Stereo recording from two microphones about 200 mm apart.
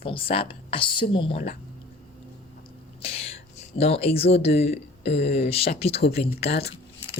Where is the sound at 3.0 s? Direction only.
30° left (ahead or behind).